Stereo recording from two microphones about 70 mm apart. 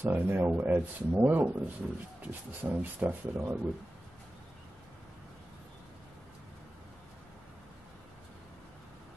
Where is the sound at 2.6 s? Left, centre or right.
Right.